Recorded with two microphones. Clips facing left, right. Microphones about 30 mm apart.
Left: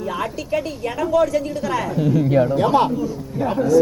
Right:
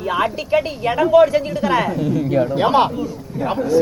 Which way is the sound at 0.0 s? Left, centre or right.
Right.